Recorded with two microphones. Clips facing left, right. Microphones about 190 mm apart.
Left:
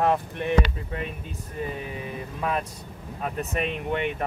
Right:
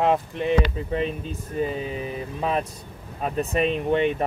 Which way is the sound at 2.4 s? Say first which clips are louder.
Right 2 dB; 25° right (ahead or behind).